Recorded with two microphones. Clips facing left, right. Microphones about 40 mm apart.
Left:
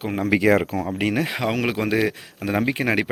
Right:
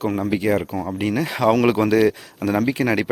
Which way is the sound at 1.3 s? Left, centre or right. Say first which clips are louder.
Right 6 dB; centre.